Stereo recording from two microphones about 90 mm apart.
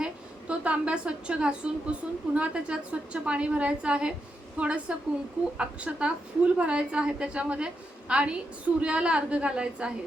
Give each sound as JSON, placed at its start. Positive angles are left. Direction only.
{"t": 0.0, "sound": "a woman's voice", "side_deg": -15}